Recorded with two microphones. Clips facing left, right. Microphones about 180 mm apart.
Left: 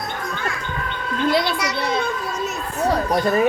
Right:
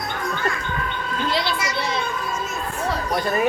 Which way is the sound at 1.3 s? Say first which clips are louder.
Left 5 dB; 60° left (ahead or behind).